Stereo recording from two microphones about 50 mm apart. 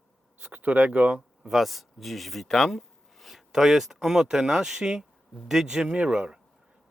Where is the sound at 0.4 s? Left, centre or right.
Right.